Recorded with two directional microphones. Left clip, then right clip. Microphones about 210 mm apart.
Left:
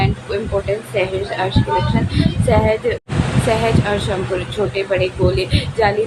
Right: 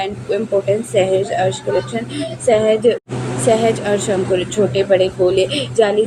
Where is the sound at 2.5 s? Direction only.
15° right (ahead or behind).